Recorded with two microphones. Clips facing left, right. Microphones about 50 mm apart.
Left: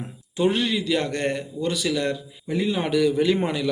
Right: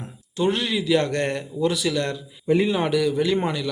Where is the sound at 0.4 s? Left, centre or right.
Centre.